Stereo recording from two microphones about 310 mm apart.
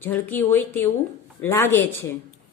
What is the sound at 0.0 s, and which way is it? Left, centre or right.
A woman's voice, centre.